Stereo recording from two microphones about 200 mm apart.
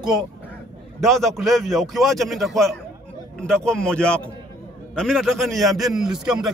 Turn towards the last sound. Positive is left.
turn(degrees=-5)  # may be behind; listen again after turning